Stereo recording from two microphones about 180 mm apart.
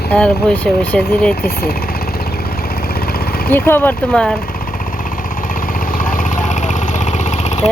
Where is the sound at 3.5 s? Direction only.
10° left (ahead or behind).